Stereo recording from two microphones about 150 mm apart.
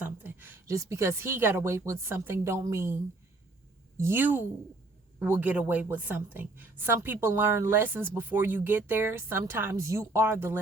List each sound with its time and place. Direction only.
0.0 s a woman's voice: 10° right (ahead or behind)